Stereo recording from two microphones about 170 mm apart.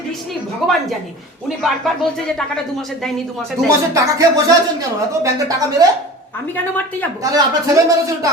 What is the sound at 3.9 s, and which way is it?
Speech, 20° right (ahead or behind).